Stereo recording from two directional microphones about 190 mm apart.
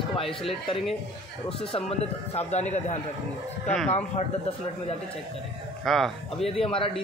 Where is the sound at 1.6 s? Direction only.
30° left (ahead or behind).